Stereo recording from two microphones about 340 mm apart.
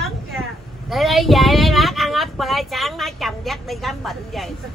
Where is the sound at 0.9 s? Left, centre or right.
Centre.